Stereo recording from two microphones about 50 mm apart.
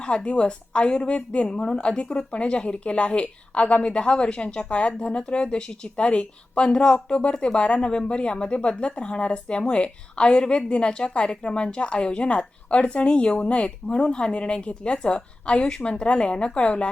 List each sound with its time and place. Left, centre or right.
0.0 s a woman's voice: centre